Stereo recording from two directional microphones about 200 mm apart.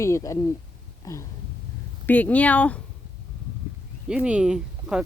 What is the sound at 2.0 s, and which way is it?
Speech, 10° left (ahead or behind).